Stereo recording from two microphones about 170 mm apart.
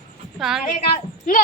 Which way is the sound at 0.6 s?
50° left (ahead or behind).